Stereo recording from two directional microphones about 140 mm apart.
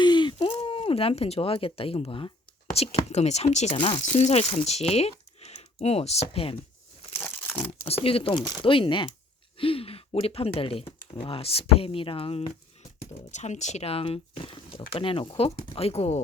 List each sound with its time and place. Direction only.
0.0 s speech: 35° left (ahead or behind)
7.2 s crumpling: 15° left (ahead or behind)
7.9 s speech: 45° left (ahead or behind)
13.1 s speech: 55° left (ahead or behind)